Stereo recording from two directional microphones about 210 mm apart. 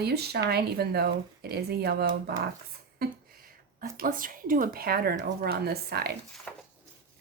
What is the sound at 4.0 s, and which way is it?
Speech, 40° right (ahead or behind).